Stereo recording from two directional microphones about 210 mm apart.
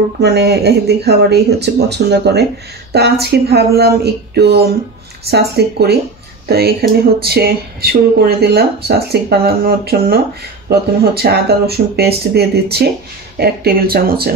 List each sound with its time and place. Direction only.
0.2 s speech: 50° right (ahead or behind)
11.2 s speech: 50° right (ahead or behind)